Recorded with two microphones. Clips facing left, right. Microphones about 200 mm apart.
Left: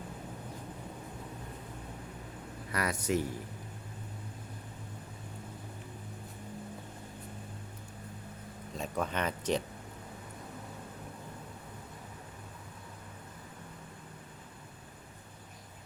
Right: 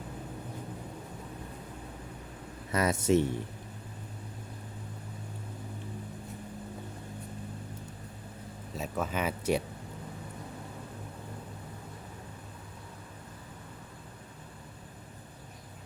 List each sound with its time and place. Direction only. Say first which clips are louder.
2.7 s speech: right 6 dB; 25° right (ahead or behind)
8.7 s speech: right 1 dB; 5° right (ahead or behind)